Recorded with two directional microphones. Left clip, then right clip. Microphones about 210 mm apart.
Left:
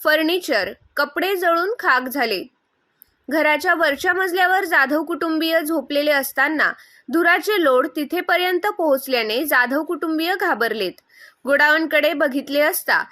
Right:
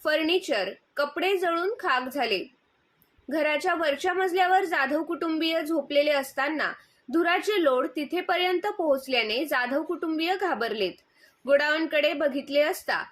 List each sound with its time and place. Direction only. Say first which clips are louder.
0.0 s a woman's voice: left 7 dB; 50° left (ahead or behind)